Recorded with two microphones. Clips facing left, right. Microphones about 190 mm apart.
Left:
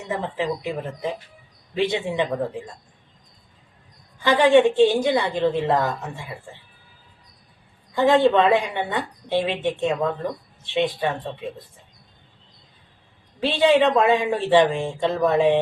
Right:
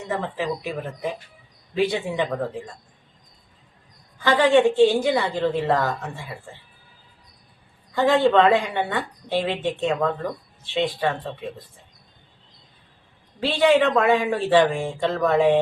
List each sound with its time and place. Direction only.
0.1 s speech: 20° left (ahead or behind)
4.2 s speech: 20° left (ahead or behind)
7.9 s a woman's voice: 20° left (ahead or behind)
13.4 s speech: 20° left (ahead or behind)